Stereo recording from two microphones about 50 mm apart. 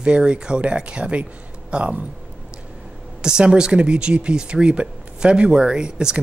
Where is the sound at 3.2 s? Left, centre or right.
Centre.